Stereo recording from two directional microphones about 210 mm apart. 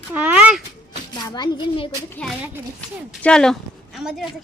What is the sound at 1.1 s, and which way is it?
Speech, 20° left (ahead or behind).